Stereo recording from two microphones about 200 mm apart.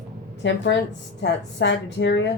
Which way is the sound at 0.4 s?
60° left (ahead or behind).